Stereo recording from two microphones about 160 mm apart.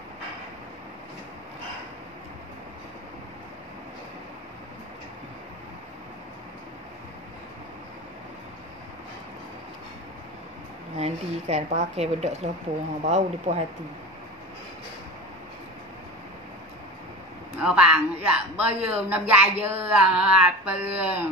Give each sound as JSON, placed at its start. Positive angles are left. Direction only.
{"t": 11.0, "sound": "speech", "side_deg": -40}
{"t": 17.6, "sound": "speech", "side_deg": -5}